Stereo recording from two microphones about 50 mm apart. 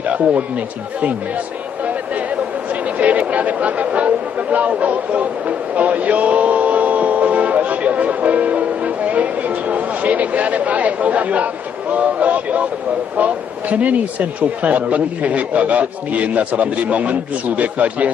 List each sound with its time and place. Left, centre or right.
0.0 s speech: right
3.0 s speech: right